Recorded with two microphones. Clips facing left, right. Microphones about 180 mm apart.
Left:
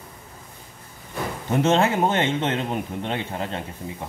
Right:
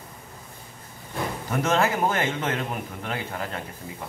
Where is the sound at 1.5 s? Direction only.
25° left (ahead or behind).